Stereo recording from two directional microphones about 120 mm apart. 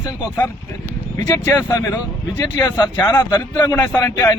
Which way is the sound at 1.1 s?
20° left (ahead or behind).